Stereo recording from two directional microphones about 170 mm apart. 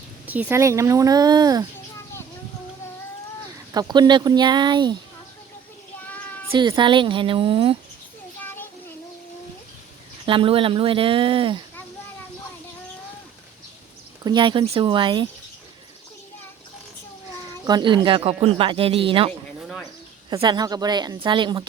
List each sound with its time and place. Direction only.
0.3 s speech: 10° right (ahead or behind)
3.8 s speech: 25° right (ahead or behind)
6.5 s speech: 30° right (ahead or behind)
8.4 s children playing: 10° left (ahead or behind)
10.2 s speech: 30° right (ahead or behind)
14.3 s speech: 30° right (ahead or behind)
17.7 s speech: 25° right (ahead or behind)
20.3 s speech: 20° right (ahead or behind)